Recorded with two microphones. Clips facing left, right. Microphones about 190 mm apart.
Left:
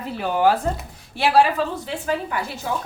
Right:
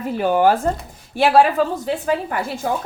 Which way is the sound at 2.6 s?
50° right (ahead or behind).